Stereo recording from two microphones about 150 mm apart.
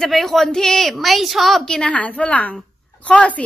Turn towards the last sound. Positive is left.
turn(degrees=10)  # may be behind; listen again after turning